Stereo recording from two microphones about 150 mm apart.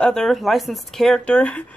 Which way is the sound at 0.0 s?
5° left (ahead or behind).